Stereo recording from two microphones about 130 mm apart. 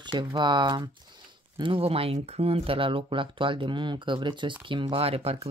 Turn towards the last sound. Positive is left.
turn(degrees=-50)  # may be behind; listen again after turning